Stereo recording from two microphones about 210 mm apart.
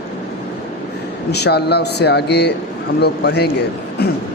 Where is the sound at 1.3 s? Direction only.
50° left (ahead or behind).